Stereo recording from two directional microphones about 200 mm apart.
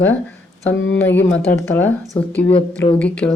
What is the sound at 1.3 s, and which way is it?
Speech, 10° left (ahead or behind).